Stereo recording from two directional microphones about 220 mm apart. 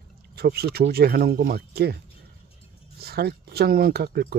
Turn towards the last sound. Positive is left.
turn(degrees=-45)  # may be behind; listen again after turning